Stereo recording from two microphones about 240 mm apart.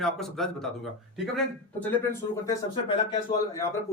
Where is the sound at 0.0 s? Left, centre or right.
Centre.